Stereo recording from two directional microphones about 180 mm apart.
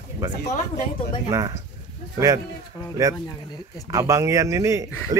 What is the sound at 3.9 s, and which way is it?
Speech, 15° right (ahead or behind).